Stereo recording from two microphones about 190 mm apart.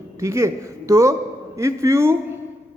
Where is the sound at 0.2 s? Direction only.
15° right (ahead or behind).